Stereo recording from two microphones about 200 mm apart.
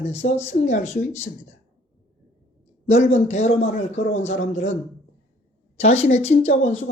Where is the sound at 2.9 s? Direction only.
35° left (ahead or behind).